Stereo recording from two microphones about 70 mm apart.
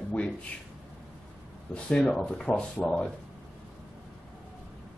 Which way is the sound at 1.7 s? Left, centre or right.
Centre.